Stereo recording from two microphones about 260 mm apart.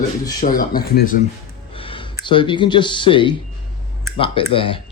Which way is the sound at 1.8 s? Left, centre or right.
Centre.